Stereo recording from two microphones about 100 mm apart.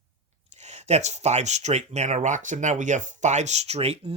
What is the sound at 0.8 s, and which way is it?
Speech, 90° right.